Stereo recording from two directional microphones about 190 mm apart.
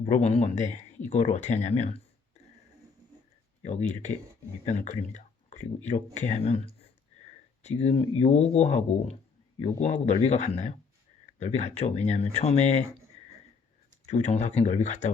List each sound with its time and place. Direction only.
0.0 s speech: 35° left (ahead or behind)
4.6 s speech: 35° left (ahead or behind)
14.1 s speech: 35° left (ahead or behind)